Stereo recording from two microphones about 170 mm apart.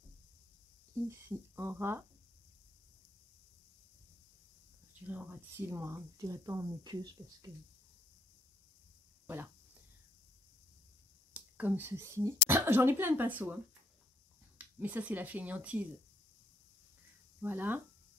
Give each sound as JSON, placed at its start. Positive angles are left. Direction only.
{"t": 1.0, "sound": "speech", "side_deg": -15}
{"t": 5.0, "sound": "speech", "side_deg": -10}
{"t": 11.3, "sound": "speech", "side_deg": -10}
{"t": 14.8, "sound": "speech", "side_deg": -10}
{"t": 17.4, "sound": "speech", "side_deg": -10}